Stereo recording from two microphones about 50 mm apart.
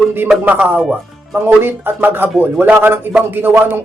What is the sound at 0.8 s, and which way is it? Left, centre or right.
Speech, centre.